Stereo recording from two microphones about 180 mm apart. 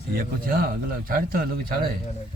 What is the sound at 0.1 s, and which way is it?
A man's voice, 55° right (ahead or behind).